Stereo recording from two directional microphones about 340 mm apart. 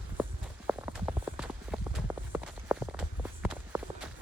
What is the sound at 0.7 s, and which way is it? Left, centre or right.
Run, centre.